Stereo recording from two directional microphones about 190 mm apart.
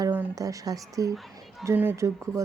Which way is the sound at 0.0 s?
15° right (ahead or behind).